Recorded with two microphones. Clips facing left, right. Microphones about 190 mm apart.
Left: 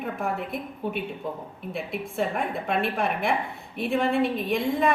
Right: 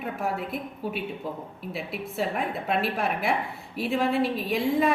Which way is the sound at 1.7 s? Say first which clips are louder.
Left 2 dB; 5° right (ahead or behind).